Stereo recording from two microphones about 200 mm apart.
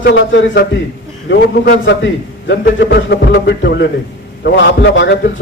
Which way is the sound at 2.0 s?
65° left (ahead or behind).